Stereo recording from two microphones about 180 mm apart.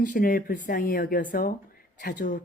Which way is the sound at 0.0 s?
50° left (ahead or behind).